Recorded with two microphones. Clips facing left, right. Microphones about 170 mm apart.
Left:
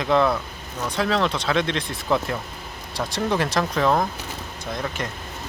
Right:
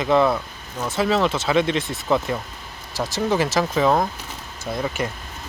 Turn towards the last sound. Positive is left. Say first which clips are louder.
# right 3 dB
turn(degrees=-5)  # may be behind; listen again after turning